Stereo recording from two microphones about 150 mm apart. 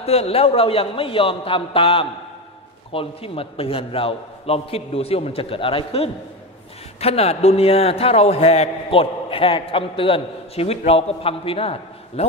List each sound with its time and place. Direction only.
0.0 s a man's voice: 40° left (ahead or behind)